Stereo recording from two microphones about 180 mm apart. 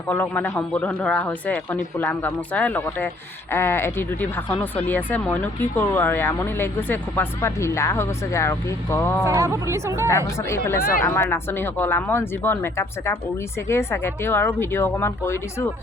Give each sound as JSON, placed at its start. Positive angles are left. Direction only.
{"t": 0.1, "sound": "speech", "side_deg": 10}
{"t": 9.2, "sound": "speech", "side_deg": -15}
{"t": 10.1, "sound": "speech", "side_deg": 15}